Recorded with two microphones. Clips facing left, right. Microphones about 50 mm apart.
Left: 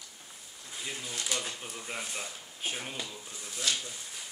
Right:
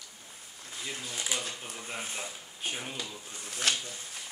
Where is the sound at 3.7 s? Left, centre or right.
Right.